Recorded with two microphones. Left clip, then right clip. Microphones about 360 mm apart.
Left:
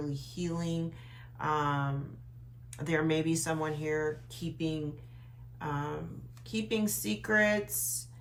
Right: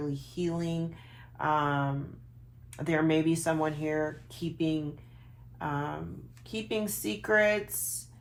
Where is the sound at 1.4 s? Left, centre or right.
Centre.